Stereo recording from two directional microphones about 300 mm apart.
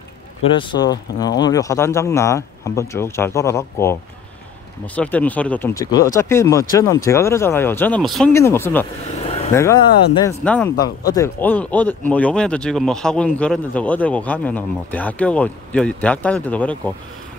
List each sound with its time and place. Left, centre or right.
0.6 s speech: centre
9.2 s vehicle: centre
9.5 s a man's voice: centre